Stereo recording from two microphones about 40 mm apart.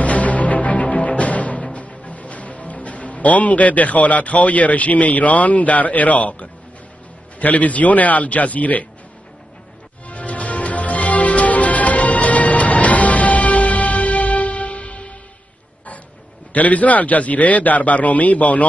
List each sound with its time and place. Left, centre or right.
0.0 s music: left
2.0 s a man's voice: left
10.0 s music: left
16.5 s a man's voice: left